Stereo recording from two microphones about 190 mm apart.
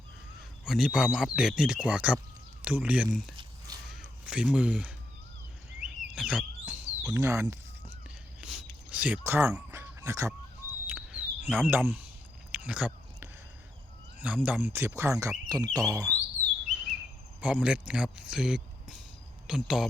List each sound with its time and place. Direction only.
0.6 s speech: centre (ahead or behind)
3.9 s a sound: 5° right (ahead or behind)
7.0 s speech: 15° right (ahead or behind)
8.4 s a sound: 5° right (ahead or behind)
14.2 s speech: 10° right (ahead or behind)
16.6 s chirp: centre (ahead or behind)
17.4 s speech: 5° right (ahead or behind)